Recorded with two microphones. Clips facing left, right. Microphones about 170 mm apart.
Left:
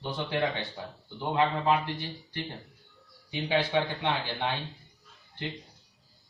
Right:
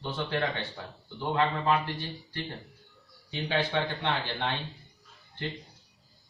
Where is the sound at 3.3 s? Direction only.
15° left (ahead or behind).